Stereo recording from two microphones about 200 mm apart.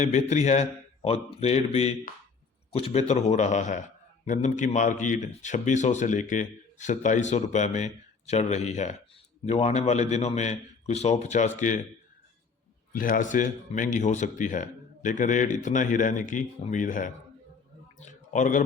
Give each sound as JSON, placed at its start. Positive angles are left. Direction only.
{"t": 0.0, "sound": "speech", "side_deg": 35}
{"t": 12.9, "sound": "speech", "side_deg": 45}
{"t": 18.1, "sound": "a sound", "side_deg": 40}